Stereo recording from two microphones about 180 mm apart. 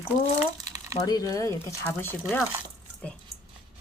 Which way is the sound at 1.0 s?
20° left (ahead or behind).